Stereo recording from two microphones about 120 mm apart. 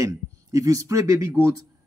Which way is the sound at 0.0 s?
30° right (ahead or behind).